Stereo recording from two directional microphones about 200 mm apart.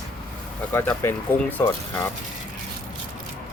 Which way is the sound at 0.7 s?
10° left (ahead or behind).